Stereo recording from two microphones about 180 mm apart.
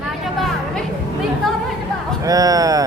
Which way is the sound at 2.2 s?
20° right (ahead or behind).